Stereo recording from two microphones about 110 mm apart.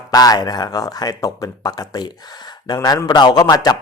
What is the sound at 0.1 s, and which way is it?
Speech, 35° left (ahead or behind).